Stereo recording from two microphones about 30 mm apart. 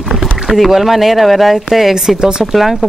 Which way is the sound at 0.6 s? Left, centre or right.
Centre.